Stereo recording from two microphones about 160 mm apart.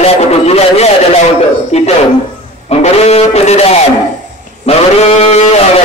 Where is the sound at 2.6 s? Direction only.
40° left (ahead or behind).